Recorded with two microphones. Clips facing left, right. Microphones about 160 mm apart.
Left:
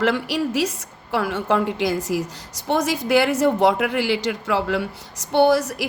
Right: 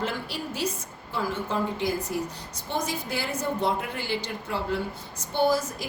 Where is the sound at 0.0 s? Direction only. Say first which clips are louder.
Left 10 dB; 85° left.